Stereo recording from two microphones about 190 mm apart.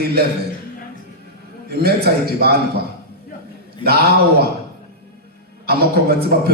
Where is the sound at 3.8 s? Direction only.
55° right (ahead or behind).